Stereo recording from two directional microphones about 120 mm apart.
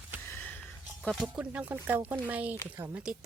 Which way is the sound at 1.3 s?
10° right (ahead or behind).